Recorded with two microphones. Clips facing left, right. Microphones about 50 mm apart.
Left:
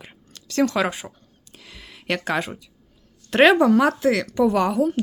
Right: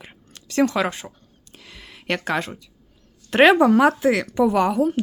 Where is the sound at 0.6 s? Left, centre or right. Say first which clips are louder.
Right 1 dB; centre.